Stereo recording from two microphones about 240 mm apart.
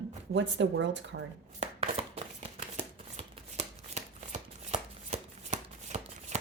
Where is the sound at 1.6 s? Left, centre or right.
Right.